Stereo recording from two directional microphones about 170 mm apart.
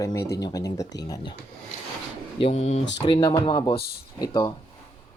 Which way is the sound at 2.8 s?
90° left.